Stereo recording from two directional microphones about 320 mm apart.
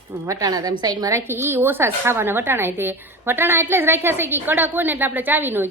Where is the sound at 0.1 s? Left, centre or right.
Centre.